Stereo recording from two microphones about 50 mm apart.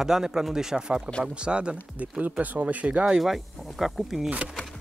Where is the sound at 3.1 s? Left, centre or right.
Centre.